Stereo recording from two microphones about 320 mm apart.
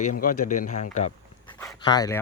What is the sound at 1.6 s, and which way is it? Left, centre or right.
Speech, centre.